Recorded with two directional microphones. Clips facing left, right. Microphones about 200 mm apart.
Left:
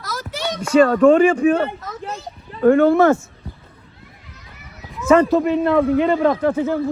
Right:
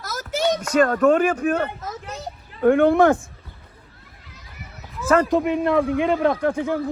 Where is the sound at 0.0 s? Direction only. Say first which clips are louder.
Right 3 dB; 50° right (ahead or behind).